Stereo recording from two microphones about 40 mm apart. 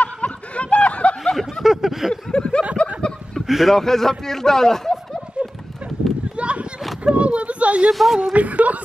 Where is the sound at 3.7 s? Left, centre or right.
Centre.